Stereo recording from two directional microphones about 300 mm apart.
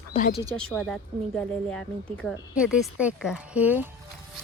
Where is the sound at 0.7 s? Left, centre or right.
Centre.